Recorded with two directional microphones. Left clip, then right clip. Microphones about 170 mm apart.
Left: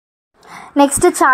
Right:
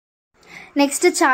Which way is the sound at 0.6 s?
20° left (ahead or behind).